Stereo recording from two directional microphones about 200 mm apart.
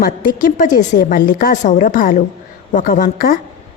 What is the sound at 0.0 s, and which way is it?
A woman's voice, 45° left (ahead or behind).